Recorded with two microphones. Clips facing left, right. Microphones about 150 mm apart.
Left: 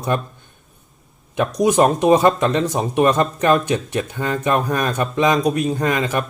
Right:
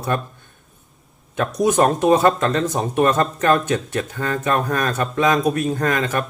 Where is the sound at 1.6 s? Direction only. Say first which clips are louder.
Left 1 dB; 10° left (ahead or behind).